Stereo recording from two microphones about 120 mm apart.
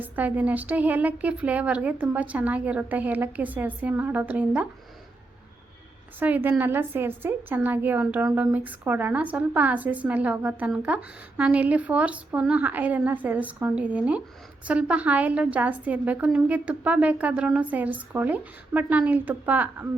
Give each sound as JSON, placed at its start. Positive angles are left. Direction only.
{"t": 0.0, "sound": "a woman's voice", "side_deg": -15}
{"t": 6.1, "sound": "a woman's voice", "side_deg": -15}